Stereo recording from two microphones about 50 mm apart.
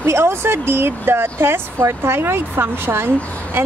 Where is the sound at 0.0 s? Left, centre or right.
Right.